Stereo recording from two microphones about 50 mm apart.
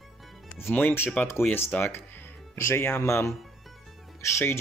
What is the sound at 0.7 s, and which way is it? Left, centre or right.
Speech, left.